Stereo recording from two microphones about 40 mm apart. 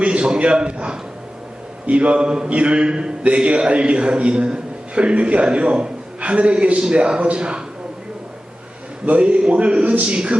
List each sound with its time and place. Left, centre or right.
0.0 s a man's voice: right
2.5 s a man's voice: right
9.0 s a man's voice: right